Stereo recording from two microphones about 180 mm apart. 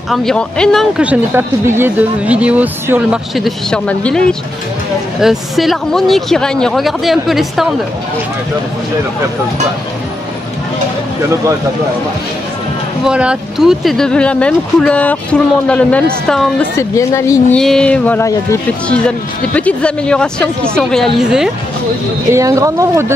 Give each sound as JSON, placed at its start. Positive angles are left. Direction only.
{"t": 0.1, "sound": "speech", "side_deg": 5}
{"t": 13.0, "sound": "speech", "side_deg": -5}
{"t": 16.7, "sound": "speech", "side_deg": 15}
{"t": 17.6, "sound": "speech", "side_deg": 5}
{"t": 18.9, "sound": "speech", "side_deg": 5}
{"t": 22.3, "sound": "speech", "side_deg": -15}